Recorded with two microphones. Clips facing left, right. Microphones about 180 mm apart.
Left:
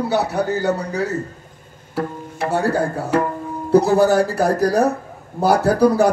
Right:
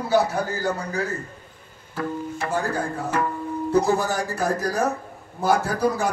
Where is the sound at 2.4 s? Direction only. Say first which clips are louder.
Left 8 dB; 70° left (ahead or behind).